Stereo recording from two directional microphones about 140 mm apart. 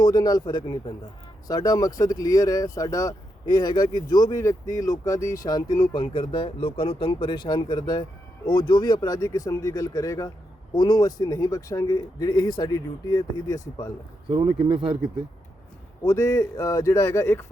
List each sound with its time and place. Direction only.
0.0 s speech: 30° left (ahead or behind)
14.3 s speech: 40° right (ahead or behind)
16.0 s speech: 20° left (ahead or behind)